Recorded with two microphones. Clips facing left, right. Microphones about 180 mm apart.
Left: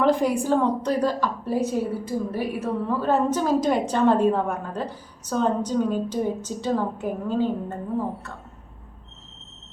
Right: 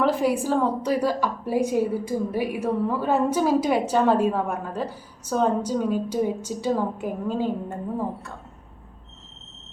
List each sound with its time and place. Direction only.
0.0 s a woman's voice: 5° right (ahead or behind)